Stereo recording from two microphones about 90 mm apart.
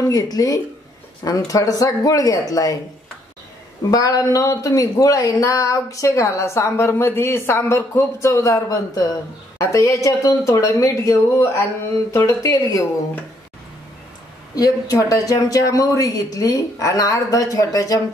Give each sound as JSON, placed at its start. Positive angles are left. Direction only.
{"t": 0.1, "sound": "speech", "side_deg": 40}
{"t": 3.9, "sound": "speech", "side_deg": 40}
{"t": 14.5, "sound": "speech", "side_deg": 40}